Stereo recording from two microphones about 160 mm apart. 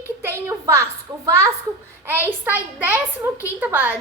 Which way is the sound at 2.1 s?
10° right (ahead or behind).